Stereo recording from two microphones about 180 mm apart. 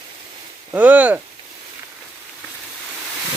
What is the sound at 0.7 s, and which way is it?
Speech, 5° right (ahead or behind).